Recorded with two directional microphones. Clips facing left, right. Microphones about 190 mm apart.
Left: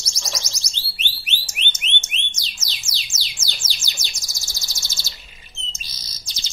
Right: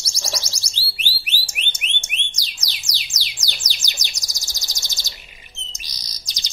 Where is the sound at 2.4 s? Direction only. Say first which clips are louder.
Even; 15° right (ahead or behind).